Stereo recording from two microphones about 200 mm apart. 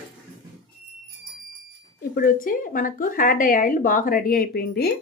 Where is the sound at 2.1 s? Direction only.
45° left (ahead or behind).